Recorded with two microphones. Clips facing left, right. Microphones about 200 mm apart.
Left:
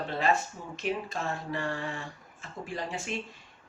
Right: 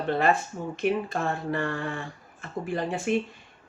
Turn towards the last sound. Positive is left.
turn(degrees=-55)  # may be behind; listen again after turning